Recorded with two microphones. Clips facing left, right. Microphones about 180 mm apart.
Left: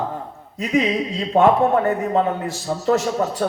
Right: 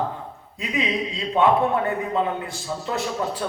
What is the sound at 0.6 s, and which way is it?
A man's voice, 40° left (ahead or behind).